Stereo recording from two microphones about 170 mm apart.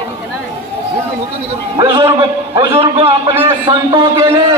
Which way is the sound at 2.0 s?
25° right (ahead or behind).